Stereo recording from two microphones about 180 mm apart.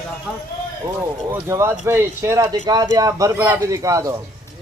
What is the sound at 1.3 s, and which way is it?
Speech, 15° right (ahead or behind).